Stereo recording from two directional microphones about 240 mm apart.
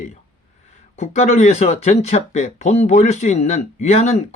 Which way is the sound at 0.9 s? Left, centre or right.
Left.